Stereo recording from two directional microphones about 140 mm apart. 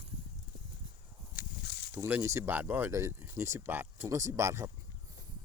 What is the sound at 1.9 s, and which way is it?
Speech, 15° right (ahead or behind).